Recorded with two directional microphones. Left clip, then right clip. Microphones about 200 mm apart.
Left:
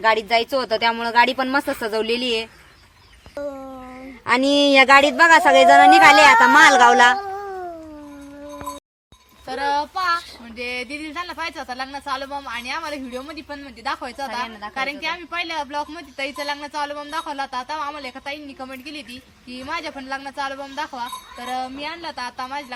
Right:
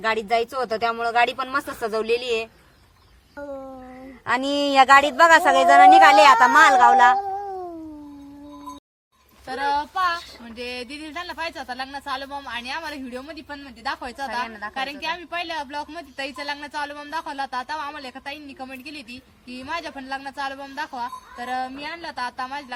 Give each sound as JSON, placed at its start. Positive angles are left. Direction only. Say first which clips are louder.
{"t": 0.3, "sound": "speech", "louder": "left 3 dB", "side_deg": 40}
{"t": 3.5, "sound": "a sound", "louder": "even", "side_deg": 25}
{"t": 4.3, "sound": "speech", "louder": "left 6 dB", "side_deg": 30}
{"t": 9.5, "sound": "a woman's voice", "louder": "left 2 dB", "side_deg": -10}